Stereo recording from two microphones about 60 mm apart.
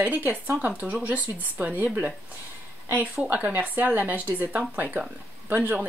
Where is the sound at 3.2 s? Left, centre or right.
Right.